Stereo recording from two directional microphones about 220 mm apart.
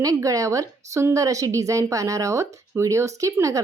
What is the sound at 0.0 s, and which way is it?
A woman's voice, 15° right (ahead or behind).